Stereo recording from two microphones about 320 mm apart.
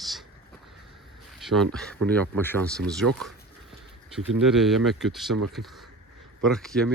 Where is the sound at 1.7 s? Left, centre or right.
Centre.